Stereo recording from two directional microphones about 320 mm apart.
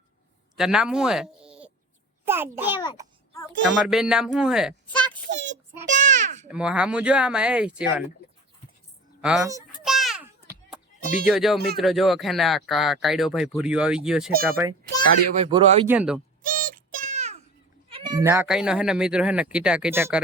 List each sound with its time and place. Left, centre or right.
0.5 s speech: centre
2.7 s a child's voice: centre
3.3 s speech: centre
5.3 s child singing: right
6.0 s a sound: right
6.5 s speech: centre
9.2 s speech: centre
9.8 s children playing: centre
11.3 s speech: centre
16.0 s speech: centre
16.4 s a sound: right
17.8 s speech: centre